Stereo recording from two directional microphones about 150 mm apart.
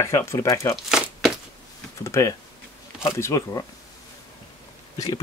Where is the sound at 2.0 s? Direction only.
20° left (ahead or behind).